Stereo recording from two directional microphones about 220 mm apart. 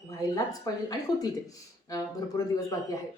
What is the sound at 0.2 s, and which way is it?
A woman's voice, 15° left (ahead or behind).